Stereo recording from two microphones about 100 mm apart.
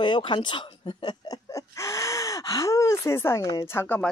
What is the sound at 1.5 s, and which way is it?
Gasp, 30° left (ahead or behind).